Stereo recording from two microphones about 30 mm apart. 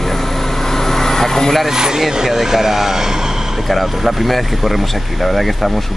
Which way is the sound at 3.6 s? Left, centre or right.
Centre.